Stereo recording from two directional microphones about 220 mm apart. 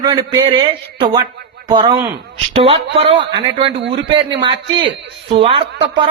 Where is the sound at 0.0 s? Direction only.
20° right (ahead or behind).